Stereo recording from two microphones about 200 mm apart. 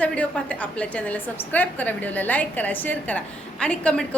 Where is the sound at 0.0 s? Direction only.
5° left (ahead or behind).